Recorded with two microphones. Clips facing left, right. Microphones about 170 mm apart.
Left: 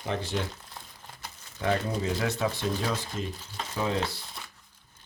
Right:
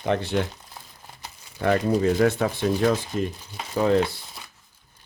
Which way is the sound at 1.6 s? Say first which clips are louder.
Right 7 dB; 55° right (ahead or behind).